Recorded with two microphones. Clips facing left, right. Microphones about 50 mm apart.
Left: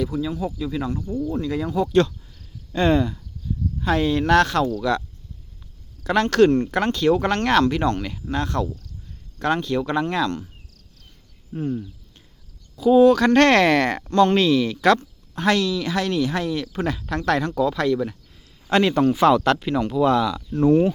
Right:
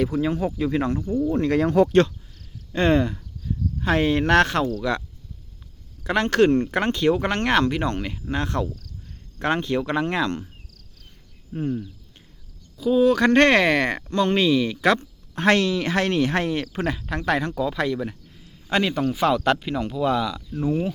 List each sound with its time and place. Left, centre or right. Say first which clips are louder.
0.0 s speech: right 2 dB; right
1.0 s speech: right 3 dB; right
1.3 s speech: right 6 dB; right
2.7 s speech: even; right
4.8 s speech: left 3 dB; centre
11.5 s speech: even; centre
13.1 s speech: left 1 dB; centre
14.9 s speech: even; right
16.7 s speech: left 1 dB; centre